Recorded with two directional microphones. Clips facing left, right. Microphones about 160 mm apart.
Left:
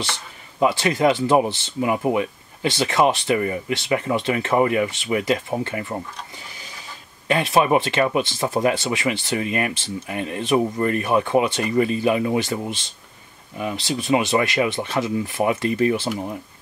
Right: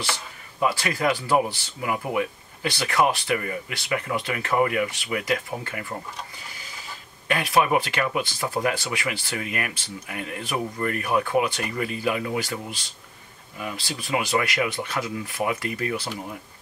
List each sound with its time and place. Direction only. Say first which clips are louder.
0.1 s speech: right 1 dB; 25° left (ahead or behind)
7.2 s speech: left 4 dB; 25° left (ahead or behind)